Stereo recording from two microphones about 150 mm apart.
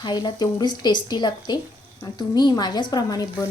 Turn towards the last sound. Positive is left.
turn(degrees=25)  # may be behind; listen again after turning